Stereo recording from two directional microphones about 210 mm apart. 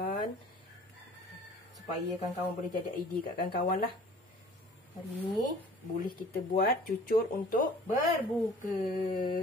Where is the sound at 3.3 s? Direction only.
40° left (ahead or behind).